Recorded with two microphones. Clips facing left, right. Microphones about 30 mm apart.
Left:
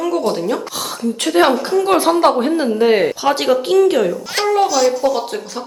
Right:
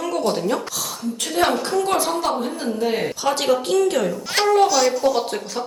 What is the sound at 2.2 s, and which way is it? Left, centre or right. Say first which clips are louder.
Speech: left 9 dB; left.